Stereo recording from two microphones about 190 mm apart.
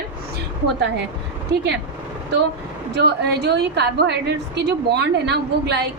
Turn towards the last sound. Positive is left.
turn(degrees=-60)  # may be behind; listen again after turning